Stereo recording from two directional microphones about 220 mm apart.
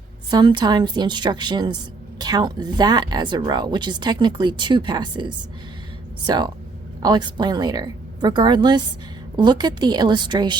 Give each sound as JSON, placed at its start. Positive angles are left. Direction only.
{"t": 0.3, "sound": "speech", "side_deg": -20}